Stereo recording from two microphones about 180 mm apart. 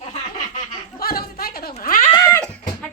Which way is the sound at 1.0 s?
55° left (ahead or behind).